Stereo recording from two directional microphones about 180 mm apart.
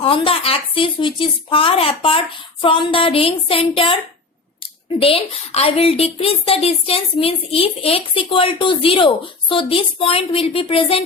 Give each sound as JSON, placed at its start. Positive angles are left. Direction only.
{"t": 0.0, "sound": "a woman's voice", "side_deg": 30}
{"t": 4.9, "sound": "a woman's voice", "side_deg": 30}